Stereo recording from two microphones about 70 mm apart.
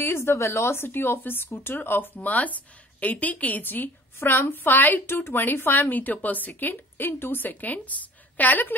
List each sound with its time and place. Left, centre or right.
0.0 s speech: left